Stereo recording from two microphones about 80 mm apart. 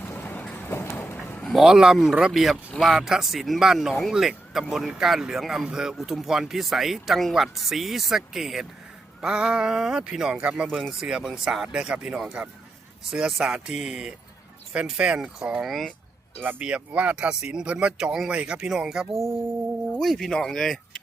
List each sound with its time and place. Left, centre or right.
0.0 s vehicle: left
0.5 s a sound: left
1.5 s speech: centre
19.1 s music: right
20.0 s speech: centre